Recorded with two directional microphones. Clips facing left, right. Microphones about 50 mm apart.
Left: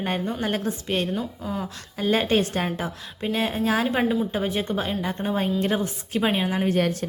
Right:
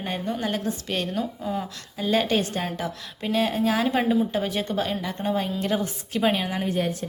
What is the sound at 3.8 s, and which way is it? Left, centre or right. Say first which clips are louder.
Speech: even; centre.